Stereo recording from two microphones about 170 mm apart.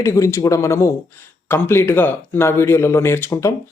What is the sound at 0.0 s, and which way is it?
Speech, 15° left (ahead or behind).